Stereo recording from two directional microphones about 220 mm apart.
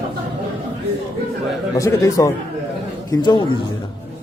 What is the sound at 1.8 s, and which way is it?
A man's voice, 15° left (ahead or behind).